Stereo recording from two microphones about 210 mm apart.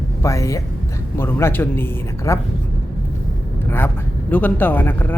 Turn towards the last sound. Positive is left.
turn(degrees=10)  # may be behind; listen again after turning